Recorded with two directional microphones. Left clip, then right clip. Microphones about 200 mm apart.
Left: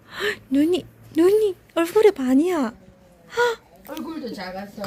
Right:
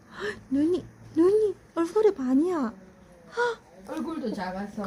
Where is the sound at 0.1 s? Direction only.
10° left (ahead or behind).